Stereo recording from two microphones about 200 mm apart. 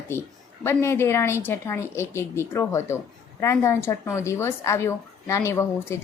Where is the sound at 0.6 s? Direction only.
15° left (ahead or behind).